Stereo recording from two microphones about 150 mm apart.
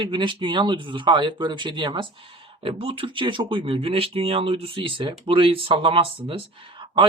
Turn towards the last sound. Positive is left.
turn(degrees=-30)  # may be behind; listen again after turning